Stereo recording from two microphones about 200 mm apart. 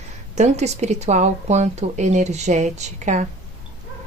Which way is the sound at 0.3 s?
35° right (ahead or behind).